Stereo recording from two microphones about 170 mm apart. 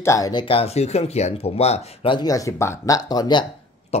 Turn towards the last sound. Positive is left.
turn(degrees=40)  # may be behind; listen again after turning